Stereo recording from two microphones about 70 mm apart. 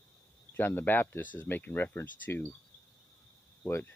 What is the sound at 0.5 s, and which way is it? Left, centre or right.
Speech, left.